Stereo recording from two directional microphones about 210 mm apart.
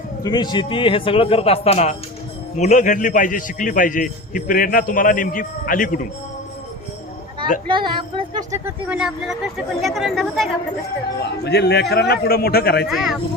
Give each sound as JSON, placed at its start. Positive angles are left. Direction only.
{"t": 0.2, "sound": "a man's voice", "side_deg": 20}
{"t": 8.9, "sound": "speech", "side_deg": -5}
{"t": 11.2, "sound": "a man's voice", "side_deg": 50}
{"t": 12.9, "sound": "speech", "side_deg": 0}